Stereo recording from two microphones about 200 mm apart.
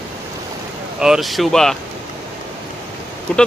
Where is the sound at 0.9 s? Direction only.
5° right (ahead or behind).